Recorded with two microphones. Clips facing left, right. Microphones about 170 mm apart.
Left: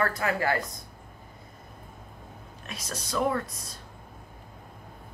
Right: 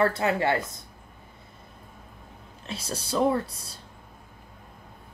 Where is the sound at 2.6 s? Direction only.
30° right (ahead or behind).